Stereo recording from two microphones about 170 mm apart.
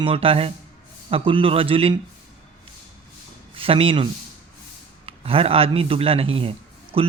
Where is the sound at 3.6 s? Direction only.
35° right (ahead or behind).